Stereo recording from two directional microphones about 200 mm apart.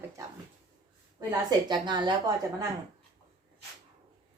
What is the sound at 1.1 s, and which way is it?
Speech, 20° right (ahead or behind).